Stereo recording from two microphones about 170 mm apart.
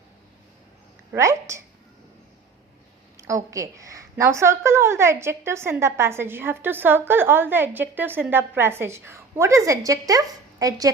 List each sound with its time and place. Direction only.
1.1 s a woman's voice: 15° right (ahead or behind)
3.2 s a woman's voice: 20° right (ahead or behind)